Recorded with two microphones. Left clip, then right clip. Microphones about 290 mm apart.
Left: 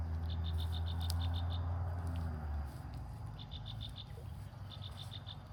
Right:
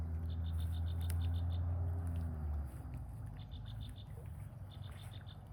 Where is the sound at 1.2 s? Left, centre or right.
Left.